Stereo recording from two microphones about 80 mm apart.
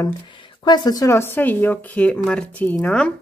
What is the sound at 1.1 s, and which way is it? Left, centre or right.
Speech, left.